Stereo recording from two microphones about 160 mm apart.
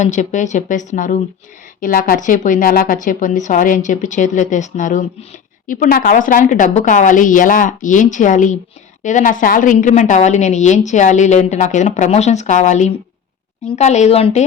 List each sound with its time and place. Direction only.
0.0 s a woman's voice: 50° left (ahead or behind)
1.8 s a woman's voice: 65° left (ahead or behind); by 14.4 s 40° left (ahead or behind)